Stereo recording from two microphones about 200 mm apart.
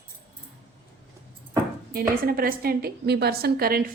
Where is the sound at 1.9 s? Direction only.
50° right (ahead or behind).